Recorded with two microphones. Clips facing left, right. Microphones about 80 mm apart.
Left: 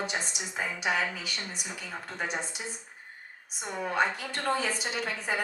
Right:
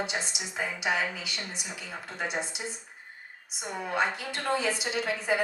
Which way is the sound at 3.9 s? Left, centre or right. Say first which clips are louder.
Even; left.